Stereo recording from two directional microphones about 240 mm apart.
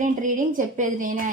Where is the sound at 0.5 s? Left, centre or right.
Right.